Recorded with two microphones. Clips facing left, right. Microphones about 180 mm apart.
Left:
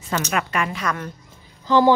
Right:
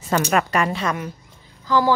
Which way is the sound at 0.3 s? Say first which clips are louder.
Right 4 dB; 40° right (ahead or behind).